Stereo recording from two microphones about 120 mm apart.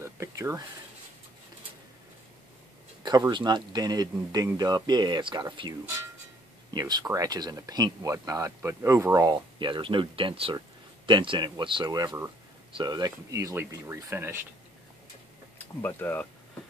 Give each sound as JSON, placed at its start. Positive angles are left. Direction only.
{"t": 0.0, "sound": "speech", "side_deg": -25}
{"t": 3.3, "sound": "speech", "side_deg": -40}
{"t": 9.3, "sound": "speech", "side_deg": -40}
{"t": 15.5, "sound": "speech", "side_deg": 20}